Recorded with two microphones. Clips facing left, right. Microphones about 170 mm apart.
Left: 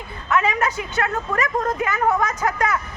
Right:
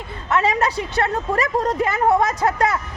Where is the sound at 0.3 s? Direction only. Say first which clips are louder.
Right 1 dB; 30° right (ahead or behind).